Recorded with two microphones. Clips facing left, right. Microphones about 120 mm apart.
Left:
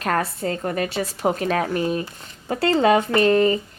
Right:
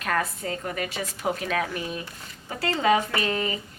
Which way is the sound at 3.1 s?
45° left (ahead or behind).